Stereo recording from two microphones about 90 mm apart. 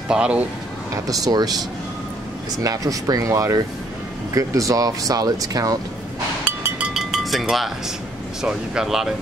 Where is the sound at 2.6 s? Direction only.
40° right (ahead or behind).